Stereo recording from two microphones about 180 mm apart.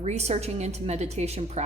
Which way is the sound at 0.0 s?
40° right (ahead or behind).